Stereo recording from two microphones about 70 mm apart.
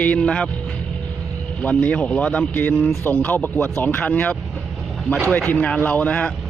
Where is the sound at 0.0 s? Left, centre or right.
Centre.